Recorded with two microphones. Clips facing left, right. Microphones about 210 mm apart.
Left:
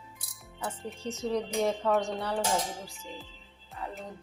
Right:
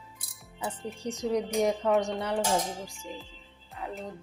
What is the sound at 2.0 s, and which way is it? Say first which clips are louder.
Dishes: right 2 dB; 20° right (ahead or behind).